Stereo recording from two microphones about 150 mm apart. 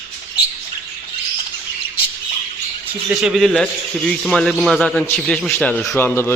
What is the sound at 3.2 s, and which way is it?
A man's voice, centre (ahead or behind).